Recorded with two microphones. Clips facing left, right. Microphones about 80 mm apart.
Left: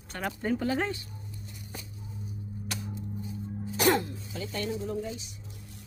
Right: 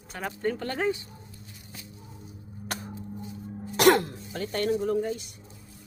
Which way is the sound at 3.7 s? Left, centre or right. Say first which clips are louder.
Right 5 dB; right.